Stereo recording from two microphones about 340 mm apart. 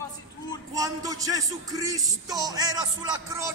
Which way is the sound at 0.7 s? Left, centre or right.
Centre.